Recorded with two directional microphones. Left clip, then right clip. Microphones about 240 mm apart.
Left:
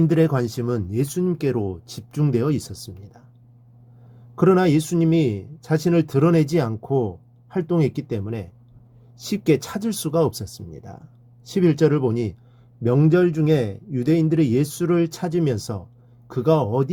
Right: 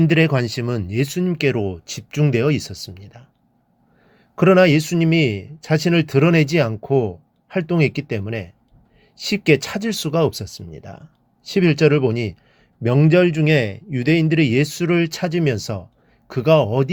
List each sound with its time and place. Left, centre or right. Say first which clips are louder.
0.1 s speech: right 2 dB; right
4.4 s speech: right 4 dB; right
9.1 s speech: right 4 dB; centre
10.1 s speech: right 1 dB; right